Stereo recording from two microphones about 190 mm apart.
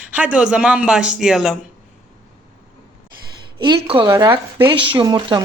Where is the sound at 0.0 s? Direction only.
10° right (ahead or behind).